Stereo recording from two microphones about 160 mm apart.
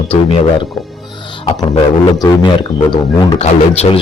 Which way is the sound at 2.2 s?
30° left (ahead or behind).